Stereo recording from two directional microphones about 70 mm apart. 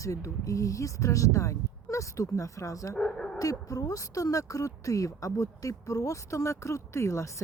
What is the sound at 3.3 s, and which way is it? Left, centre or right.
Speech, left.